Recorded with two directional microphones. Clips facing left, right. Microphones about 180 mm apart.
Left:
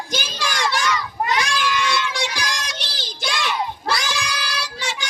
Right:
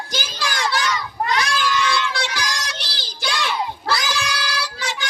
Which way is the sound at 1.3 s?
15° left (ahead or behind).